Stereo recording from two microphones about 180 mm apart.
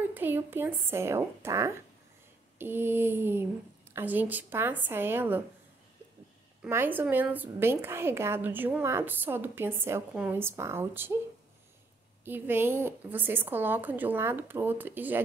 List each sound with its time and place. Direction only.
0.1 s a woman's voice: 10° right (ahead or behind)
6.6 s a woman's voice: 10° right (ahead or behind)
12.3 s a woman's voice: 10° right (ahead or behind)